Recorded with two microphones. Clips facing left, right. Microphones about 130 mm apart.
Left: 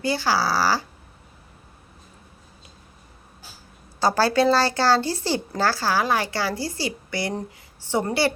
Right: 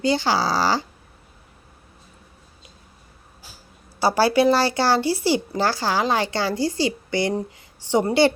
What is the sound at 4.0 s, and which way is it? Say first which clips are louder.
A woman's voice: right 2 dB; 10° right (ahead or behind).